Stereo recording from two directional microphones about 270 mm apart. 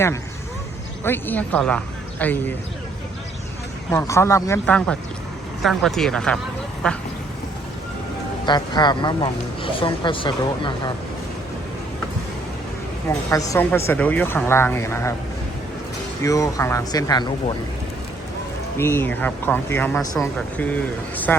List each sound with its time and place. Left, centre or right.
1.0 s speech: centre
3.9 s speech: centre
8.4 s speech: centre
13.1 s speech: centre
16.2 s speech: centre
18.8 s speech: centre